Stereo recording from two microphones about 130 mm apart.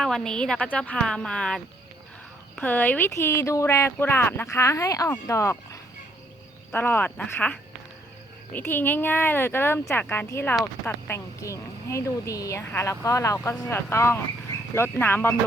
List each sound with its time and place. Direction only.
0.0 s speech: 5° left (ahead or behind)